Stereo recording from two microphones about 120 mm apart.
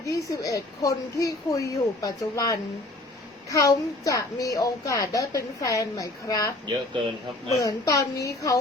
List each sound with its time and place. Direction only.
0.1 s a woman's voice: 30° left (ahead or behind)
7.5 s a woman's voice: 30° left (ahead or behind)